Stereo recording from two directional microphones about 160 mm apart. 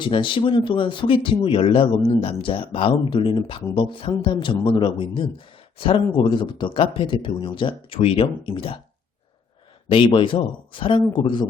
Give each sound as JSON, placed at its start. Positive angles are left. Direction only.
{"t": 0.0, "sound": "speech", "side_deg": 30}
{"t": 9.9, "sound": "speech", "side_deg": 30}